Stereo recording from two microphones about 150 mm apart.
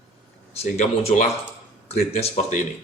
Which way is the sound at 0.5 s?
45° left (ahead or behind).